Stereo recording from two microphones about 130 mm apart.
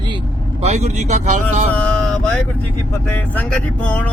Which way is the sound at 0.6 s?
60° right (ahead or behind).